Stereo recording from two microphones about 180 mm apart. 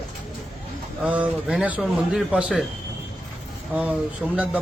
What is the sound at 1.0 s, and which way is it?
A man's voice, 5° right (ahead or behind).